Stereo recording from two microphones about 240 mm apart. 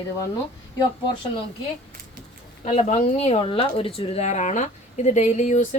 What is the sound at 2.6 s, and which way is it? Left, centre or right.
Speech, left.